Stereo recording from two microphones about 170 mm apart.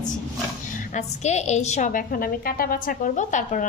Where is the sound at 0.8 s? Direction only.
45° left (ahead or behind).